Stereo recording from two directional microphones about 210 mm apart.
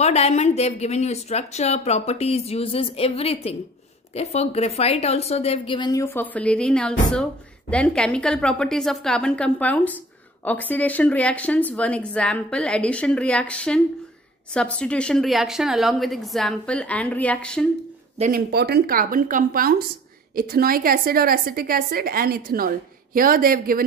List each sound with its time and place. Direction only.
0.0 s a woman's voice: 30° left (ahead or behind); by 17.6 s 5° left (ahead or behind)
18.1 s speech: 35° right (ahead or behind)
18.5 s a woman's voice: 50° right (ahead or behind)